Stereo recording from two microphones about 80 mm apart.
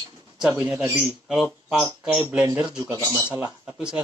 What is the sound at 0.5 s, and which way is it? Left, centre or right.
Speech, centre.